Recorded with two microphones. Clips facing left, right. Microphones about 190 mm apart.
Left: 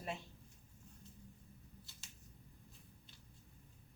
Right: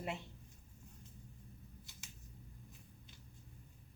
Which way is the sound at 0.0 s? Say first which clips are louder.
Right 2 dB; 20° right (ahead or behind).